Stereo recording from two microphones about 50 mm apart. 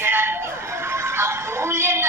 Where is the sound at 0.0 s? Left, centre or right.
Right.